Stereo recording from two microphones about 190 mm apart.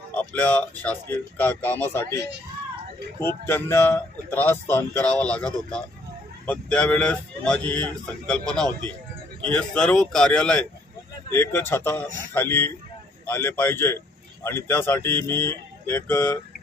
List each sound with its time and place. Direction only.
0.1 s speech: 10° left (ahead or behind)
3.4 s speech: 10° left (ahead or behind)